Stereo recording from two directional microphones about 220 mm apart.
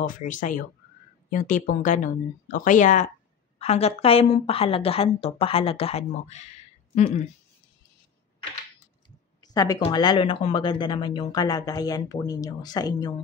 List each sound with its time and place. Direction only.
0.0 s a woman's voice: 35° left (ahead or behind)
9.5 s speech: 15° left (ahead or behind)